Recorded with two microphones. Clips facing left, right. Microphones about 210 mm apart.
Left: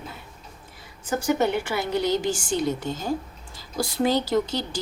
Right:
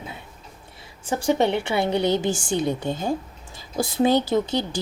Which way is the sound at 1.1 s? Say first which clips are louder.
Right 2 dB; 25° right (ahead or behind).